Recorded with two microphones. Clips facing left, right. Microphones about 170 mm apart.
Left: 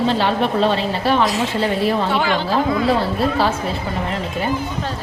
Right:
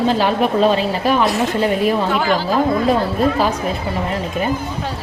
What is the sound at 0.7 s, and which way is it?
Speech, 10° right (ahead or behind).